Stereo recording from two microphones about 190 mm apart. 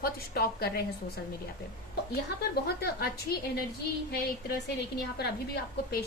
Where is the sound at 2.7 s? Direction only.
55° left (ahead or behind).